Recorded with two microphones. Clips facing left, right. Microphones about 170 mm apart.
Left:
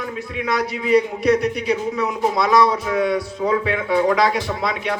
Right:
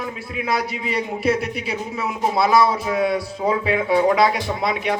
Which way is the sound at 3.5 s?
25° right (ahead or behind).